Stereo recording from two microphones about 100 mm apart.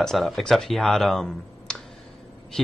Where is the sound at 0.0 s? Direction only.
5° left (ahead or behind).